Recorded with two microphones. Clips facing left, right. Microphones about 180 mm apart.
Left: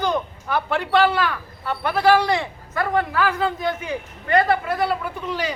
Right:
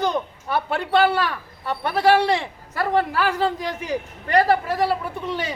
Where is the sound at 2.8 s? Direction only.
30° right (ahead or behind).